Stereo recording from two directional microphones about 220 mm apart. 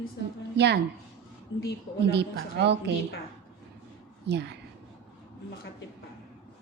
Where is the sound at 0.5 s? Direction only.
50° right (ahead or behind).